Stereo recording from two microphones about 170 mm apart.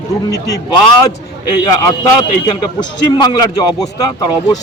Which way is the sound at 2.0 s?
25° left (ahead or behind).